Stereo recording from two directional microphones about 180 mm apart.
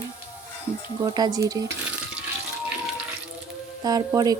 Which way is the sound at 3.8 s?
20° right (ahead or behind).